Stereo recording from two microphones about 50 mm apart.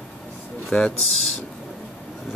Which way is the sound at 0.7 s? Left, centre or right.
Left.